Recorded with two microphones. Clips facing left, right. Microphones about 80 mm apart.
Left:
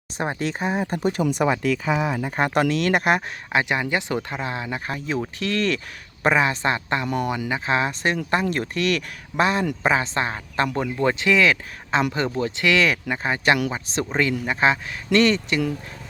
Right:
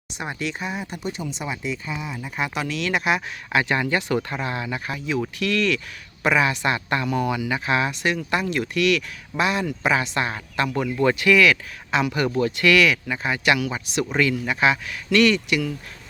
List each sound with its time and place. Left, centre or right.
0.2 s speech: left
1.2 s speech: left
1.8 s speech: left
2.1 s speech: left
3.5 s speech: left
4.9 s speech: left
12.9 s speech: left